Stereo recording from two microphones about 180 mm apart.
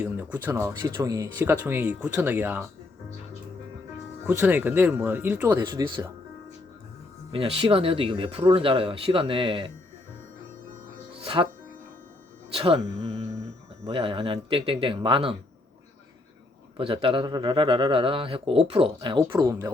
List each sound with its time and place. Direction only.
0.0 s speech: 10° right (ahead or behind)
4.3 s speech: 5° right (ahead or behind)
5.5 s speech: 20° right (ahead or behind)
7.3 s speech: 30° right (ahead or behind)
12.5 s speech: 30° right (ahead or behind)
16.7 s speech: 30° right (ahead or behind)
19.3 s speech: 15° right (ahead or behind)